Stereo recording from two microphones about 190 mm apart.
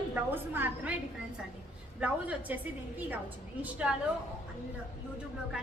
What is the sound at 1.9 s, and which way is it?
Speech, 5° right (ahead or behind).